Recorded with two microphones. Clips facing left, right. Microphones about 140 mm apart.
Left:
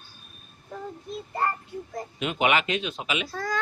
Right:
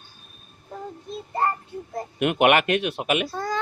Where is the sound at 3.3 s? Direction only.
30° right (ahead or behind).